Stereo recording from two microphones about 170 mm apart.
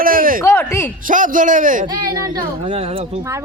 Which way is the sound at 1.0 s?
50° right (ahead or behind).